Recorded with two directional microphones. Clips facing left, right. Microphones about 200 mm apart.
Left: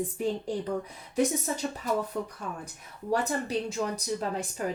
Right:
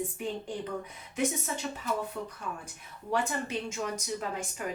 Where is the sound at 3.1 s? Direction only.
35° left (ahead or behind).